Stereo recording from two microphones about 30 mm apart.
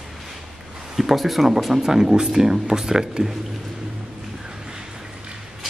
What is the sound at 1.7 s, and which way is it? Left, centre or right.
Speech, centre.